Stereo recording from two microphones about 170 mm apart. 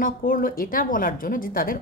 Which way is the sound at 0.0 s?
55° left (ahead or behind).